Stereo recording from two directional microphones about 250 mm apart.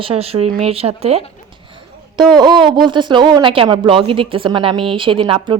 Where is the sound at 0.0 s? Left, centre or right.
Right.